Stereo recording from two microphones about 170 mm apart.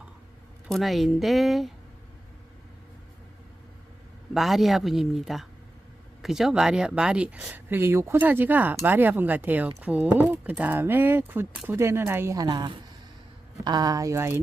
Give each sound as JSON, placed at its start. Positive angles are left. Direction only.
{"t": 0.7, "sound": "speech", "side_deg": 0}
{"t": 4.4, "sound": "speech", "side_deg": 0}